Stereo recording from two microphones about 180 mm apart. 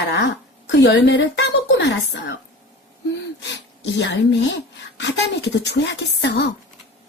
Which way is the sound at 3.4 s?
75° left (ahead or behind).